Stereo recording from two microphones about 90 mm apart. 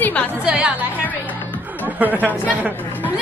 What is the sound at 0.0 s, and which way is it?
Music, 15° left (ahead or behind).